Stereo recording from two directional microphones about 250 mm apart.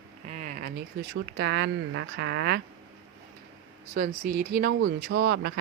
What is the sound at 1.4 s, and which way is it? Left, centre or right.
A woman's voice, right.